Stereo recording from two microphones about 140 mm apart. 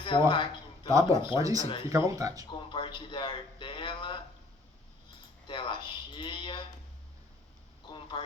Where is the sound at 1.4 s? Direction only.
25° right (ahead or behind).